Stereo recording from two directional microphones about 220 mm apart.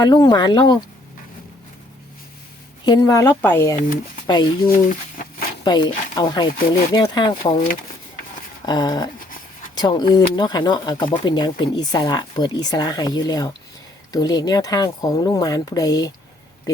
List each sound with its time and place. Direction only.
0.0 s speech: 20° left (ahead or behind)
2.8 s speech: 15° left (ahead or behind)
8.6 s speech: 20° left (ahead or behind)